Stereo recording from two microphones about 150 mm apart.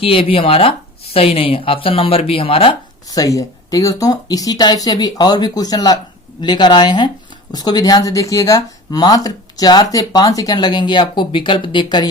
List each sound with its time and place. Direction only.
0.0 s speech: 40° left (ahead or behind)
3.1 s speech: 20° left (ahead or behind)